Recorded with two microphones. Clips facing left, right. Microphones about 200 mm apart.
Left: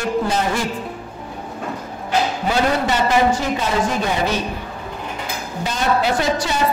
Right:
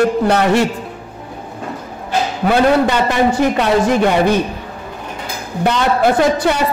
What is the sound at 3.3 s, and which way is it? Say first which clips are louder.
A man's voice: right 6 dB; 65° right (ahead or behind).